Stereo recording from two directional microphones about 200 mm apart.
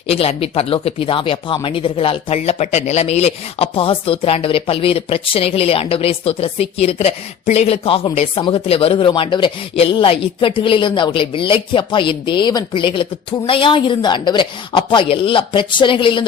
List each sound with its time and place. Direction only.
0.1 s speech: 30° left (ahead or behind)